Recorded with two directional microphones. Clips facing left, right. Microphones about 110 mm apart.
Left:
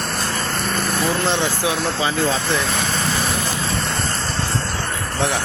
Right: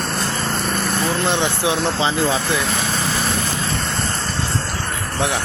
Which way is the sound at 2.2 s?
10° right (ahead or behind).